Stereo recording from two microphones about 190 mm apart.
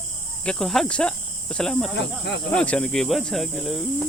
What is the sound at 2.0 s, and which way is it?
Speech, 65° left (ahead or behind).